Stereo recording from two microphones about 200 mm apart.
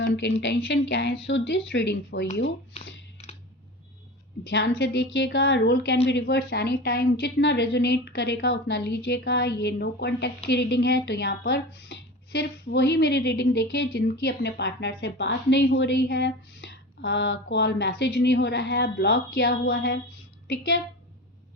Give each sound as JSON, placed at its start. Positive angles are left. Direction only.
{"t": 0.0, "sound": "a woman's voice", "side_deg": 55}
{"t": 3.2, "sound": "a sound", "side_deg": 30}
{"t": 4.8, "sound": "a woman's voice", "side_deg": 55}